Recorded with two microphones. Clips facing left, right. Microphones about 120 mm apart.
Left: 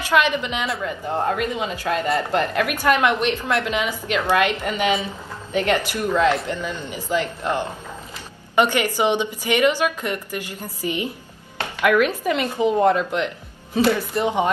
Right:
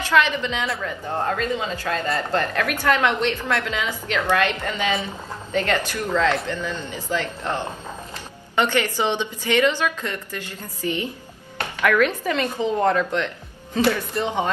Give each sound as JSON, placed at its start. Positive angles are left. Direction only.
{"t": 0.0, "sound": "a woman's voice", "side_deg": 15}